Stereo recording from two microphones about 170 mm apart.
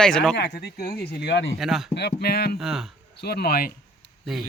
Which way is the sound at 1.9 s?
75° left (ahead or behind).